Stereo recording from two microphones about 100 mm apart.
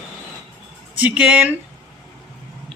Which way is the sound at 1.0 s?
10° right (ahead or behind).